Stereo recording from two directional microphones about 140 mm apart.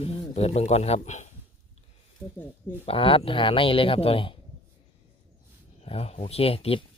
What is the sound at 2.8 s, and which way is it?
Speech, 40° left (ahead or behind).